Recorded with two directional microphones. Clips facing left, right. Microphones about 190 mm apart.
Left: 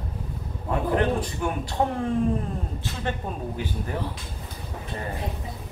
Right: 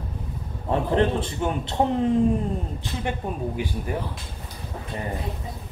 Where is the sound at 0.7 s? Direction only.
25° right (ahead or behind).